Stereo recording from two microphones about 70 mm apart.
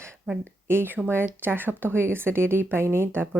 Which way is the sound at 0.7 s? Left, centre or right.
Right.